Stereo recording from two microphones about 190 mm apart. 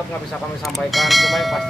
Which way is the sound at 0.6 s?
Centre (ahead or behind).